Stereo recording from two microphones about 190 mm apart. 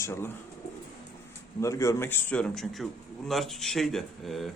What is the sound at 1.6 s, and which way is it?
Speech, 15° left (ahead or behind).